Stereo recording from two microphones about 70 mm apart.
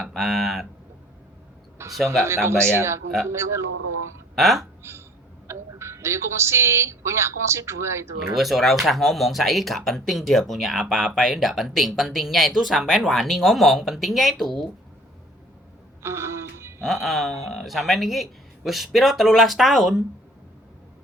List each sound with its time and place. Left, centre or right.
0.0 s speech: centre
1.8 s a sound: right
2.2 s a man's voice: right
4.4 s speech: centre
4.8 s a sound: right
5.5 s a woman's voice: right
8.3 s speech: centre
16.0 s music: right
16.8 s speech: centre